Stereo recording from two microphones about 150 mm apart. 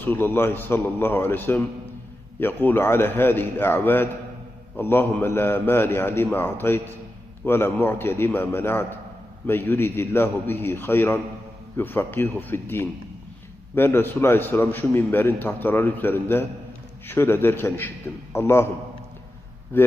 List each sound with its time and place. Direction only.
0.0 s a man's voice: 15° left (ahead or behind)
19.7 s a man's voice: 15° left (ahead or behind)